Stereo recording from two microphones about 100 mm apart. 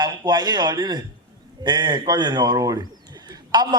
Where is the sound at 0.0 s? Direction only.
45° right (ahead or behind).